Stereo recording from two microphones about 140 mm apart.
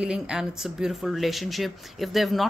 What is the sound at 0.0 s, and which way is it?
Speech, 5° right (ahead or behind).